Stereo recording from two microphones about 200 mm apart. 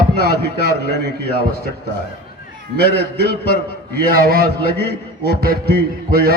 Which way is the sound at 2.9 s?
55° left (ahead or behind).